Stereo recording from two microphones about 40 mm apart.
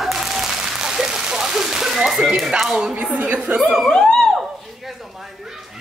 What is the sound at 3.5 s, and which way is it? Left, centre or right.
Speech, right.